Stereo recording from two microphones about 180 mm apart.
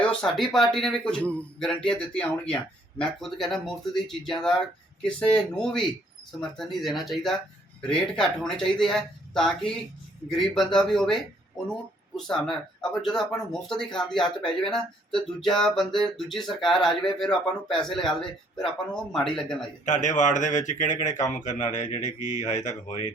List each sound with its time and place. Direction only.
0.0 s speech: 5° left (ahead or behind)
19.8 s speech: 45° left (ahead or behind)